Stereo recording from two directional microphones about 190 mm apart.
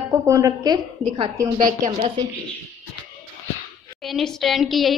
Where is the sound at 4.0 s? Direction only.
Centre (ahead or behind).